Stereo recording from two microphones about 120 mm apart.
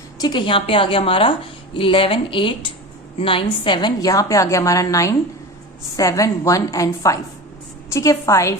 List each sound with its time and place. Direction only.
0.2 s a woman's voice: 40° left (ahead or behind)